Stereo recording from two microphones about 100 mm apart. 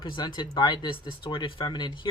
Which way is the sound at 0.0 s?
50° left (ahead or behind).